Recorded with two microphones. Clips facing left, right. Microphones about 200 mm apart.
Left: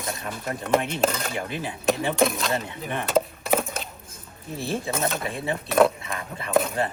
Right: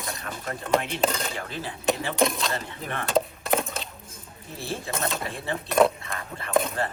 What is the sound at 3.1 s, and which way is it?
Wood, centre (ahead or behind).